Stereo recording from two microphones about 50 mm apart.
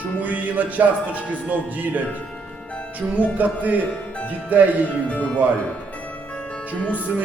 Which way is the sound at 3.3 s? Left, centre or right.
Right.